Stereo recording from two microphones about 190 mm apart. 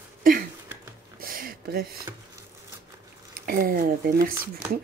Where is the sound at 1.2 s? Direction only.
50° right (ahead or behind).